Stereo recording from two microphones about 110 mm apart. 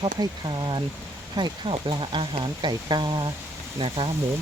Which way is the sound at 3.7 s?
55° right (ahead or behind).